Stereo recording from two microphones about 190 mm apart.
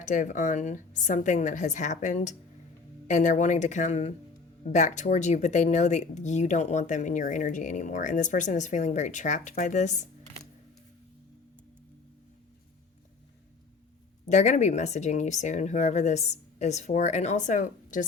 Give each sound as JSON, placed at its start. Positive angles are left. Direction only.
{"t": 0.0, "sound": "speech", "side_deg": 40}
{"t": 14.3, "sound": "speech", "side_deg": 35}